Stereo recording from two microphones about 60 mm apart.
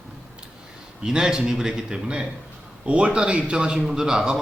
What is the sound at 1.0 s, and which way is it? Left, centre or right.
Speech, centre.